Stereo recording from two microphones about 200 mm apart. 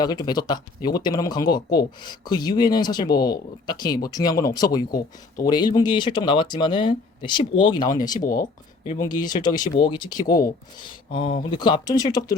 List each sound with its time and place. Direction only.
0.0 s speech: 20° left (ahead or behind)